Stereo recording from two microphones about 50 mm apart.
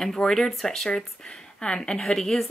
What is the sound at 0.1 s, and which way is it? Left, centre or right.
A woman's voice, centre.